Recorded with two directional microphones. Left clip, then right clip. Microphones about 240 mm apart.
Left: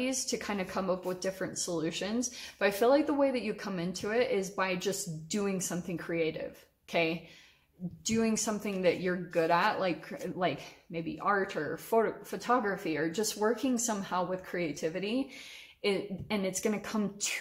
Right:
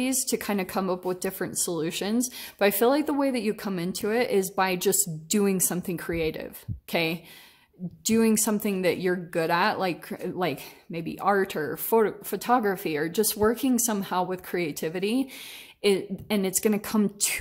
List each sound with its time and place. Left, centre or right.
0.0 s speech: right